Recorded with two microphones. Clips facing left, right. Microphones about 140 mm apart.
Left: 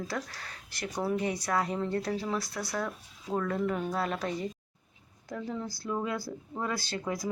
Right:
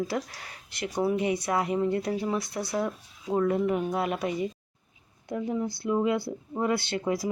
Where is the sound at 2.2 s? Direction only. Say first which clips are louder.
Right 4 dB; 20° right (ahead or behind).